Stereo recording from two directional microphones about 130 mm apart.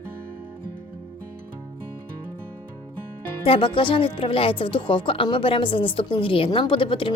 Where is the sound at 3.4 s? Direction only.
40° left (ahead or behind).